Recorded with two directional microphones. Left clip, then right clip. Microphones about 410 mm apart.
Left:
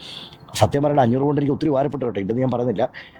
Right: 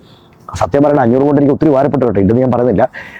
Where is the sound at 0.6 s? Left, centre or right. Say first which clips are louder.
Right 7 dB; right.